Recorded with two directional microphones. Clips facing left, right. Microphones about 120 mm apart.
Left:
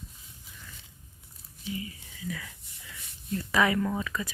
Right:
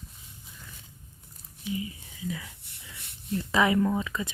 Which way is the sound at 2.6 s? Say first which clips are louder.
Right 2 dB; 70° right (ahead or behind).